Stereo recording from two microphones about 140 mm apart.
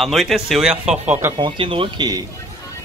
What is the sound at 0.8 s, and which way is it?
Speech, 50° right (ahead or behind).